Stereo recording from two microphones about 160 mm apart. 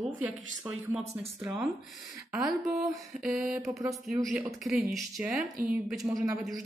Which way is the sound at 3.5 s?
20° right (ahead or behind).